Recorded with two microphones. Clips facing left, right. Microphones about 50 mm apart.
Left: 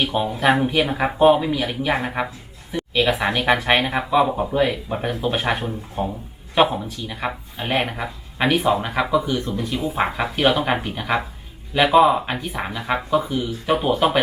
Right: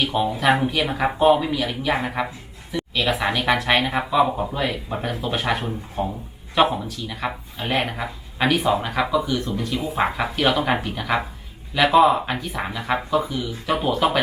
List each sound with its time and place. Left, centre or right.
0.1 s speech: left
0.6 s speech: centre
11.9 s speech: centre